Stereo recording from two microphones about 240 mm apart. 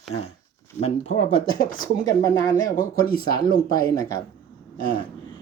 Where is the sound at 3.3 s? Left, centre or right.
Centre.